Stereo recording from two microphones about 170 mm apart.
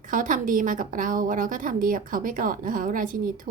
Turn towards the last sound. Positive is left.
turn(degrees=-55)  # may be behind; listen again after turning